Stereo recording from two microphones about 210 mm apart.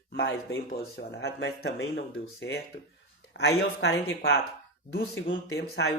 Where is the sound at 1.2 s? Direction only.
50° left (ahead or behind).